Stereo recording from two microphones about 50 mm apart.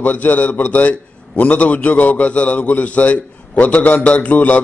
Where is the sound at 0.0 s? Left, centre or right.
Left.